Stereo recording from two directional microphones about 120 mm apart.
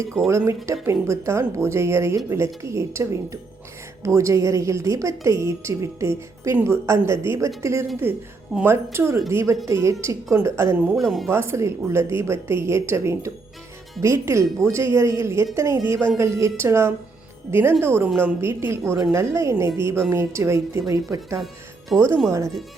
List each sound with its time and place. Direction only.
0.3 s a woman's voice: 25° right (ahead or behind)
10.9 s speech: centre (ahead or behind)
11.3 s a woman's voice: 20° right (ahead or behind)